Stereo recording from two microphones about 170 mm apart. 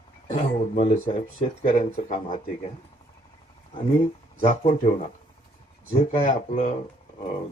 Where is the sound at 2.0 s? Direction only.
50° left (ahead or behind).